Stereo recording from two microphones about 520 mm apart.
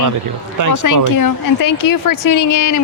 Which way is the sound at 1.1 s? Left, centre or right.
Left.